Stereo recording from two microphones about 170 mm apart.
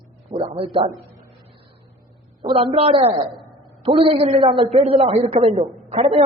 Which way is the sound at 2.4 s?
30° right (ahead or behind).